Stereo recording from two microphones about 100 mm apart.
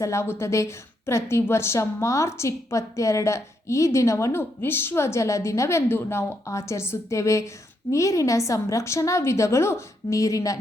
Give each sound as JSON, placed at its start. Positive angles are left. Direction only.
{"t": 0.0, "sound": "a woman's voice", "side_deg": 30}